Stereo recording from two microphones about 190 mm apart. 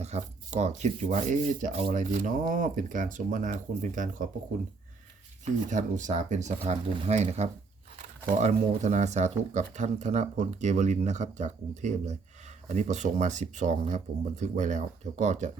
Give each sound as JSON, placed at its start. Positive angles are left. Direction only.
{"t": 0.0, "sound": "speech", "side_deg": -35}
{"t": 5.7, "sound": "speech", "side_deg": -40}